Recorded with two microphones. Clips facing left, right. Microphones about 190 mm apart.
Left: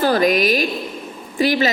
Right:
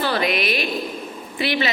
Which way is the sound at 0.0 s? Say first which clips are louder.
Left 6 dB; 45° left (ahead or behind).